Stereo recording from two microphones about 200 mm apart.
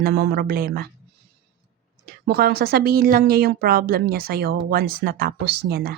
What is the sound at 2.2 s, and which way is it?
A woman's voice, 50° right (ahead or behind).